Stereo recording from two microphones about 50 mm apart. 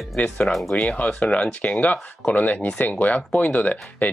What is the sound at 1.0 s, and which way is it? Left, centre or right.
Speech, centre.